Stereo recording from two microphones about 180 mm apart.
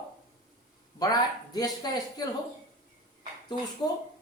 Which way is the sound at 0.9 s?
20° left (ahead or behind).